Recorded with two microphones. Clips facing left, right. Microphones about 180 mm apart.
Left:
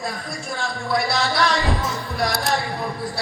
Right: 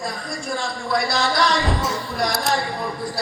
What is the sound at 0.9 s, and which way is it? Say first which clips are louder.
Speech: right 1 dB; centre (ahead or behind).